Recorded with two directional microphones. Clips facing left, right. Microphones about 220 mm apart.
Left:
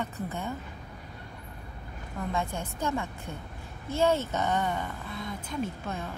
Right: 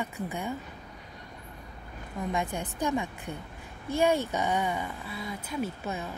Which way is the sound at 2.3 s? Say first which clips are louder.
Right 1 dB; 15° right (ahead or behind).